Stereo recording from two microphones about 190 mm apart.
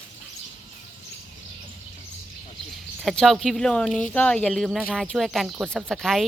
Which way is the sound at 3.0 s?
Centre (ahead or behind).